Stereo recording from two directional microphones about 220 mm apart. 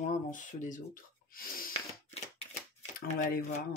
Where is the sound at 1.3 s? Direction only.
35° left (ahead or behind).